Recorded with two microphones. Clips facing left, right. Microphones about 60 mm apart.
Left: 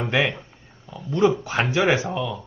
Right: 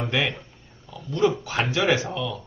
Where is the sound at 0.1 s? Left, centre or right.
Left.